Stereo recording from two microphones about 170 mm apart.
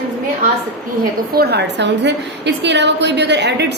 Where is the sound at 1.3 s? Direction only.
70° right (ahead or behind).